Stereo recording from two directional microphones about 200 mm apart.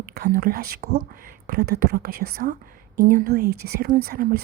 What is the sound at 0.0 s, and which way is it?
A woman's voice, 50° right (ahead or behind).